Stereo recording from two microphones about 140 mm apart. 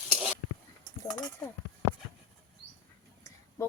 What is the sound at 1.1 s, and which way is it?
Speech, 25° left (ahead or behind).